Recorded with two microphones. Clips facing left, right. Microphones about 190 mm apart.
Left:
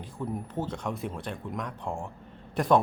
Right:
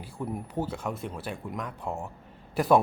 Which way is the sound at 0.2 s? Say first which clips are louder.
Right 1 dB; 10° right (ahead or behind).